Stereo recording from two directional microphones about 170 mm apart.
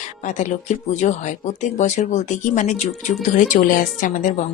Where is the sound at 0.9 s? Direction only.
45° left (ahead or behind).